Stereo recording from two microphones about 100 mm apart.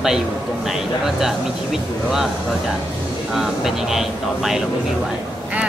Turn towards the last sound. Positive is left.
turn(degrees=-5)  # may be behind; listen again after turning